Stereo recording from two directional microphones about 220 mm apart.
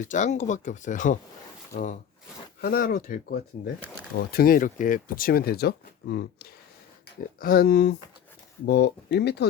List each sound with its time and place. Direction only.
0.0 s speech: 35° left (ahead or behind); by 9.5 s 50° left (ahead or behind)